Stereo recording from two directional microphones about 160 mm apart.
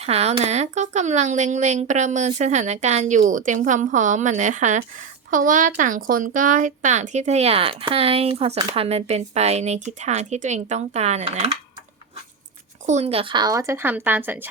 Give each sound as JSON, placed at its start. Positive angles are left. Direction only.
{"t": 0.0, "sound": "speech", "side_deg": -40}
{"t": 12.8, "sound": "speech", "side_deg": -45}